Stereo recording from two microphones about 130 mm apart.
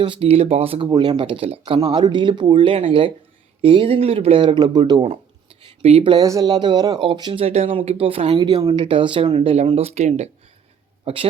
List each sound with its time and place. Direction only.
0.0 s speech: 45° right (ahead or behind)
1.8 s speech: 35° right (ahead or behind)
5.8 s speech: 45° right (ahead or behind)
6.2 s speech: 30° right (ahead or behind)
7.4 s speech: 50° right (ahead or behind)
11.0 s speech: 45° right (ahead or behind)